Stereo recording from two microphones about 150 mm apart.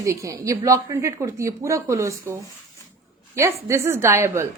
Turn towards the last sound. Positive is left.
turn(degrees=-15)  # may be behind; listen again after turning